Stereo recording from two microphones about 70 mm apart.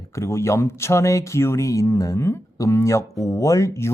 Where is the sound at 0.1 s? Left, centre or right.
Left.